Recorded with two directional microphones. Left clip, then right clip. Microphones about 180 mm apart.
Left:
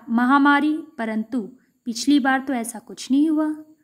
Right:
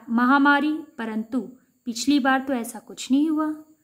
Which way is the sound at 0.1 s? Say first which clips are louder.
Left 1 dB; 20° left (ahead or behind).